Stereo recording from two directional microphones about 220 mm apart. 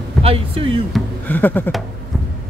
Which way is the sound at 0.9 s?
5° left (ahead or behind).